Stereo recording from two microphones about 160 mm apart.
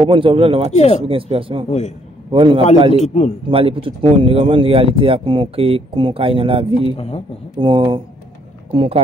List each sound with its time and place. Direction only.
0.0 s speech: 30° right (ahead or behind)
0.7 s a man's voice: 40° left (ahead or behind)
1.0 s speech: 35° right (ahead or behind)
3.0 s a man's voice: 40° left (ahead or behind)
3.4 s speech: 35° right (ahead or behind)
7.0 s a man's voice: 40° left (ahead or behind)
7.5 s speech: 35° right (ahead or behind)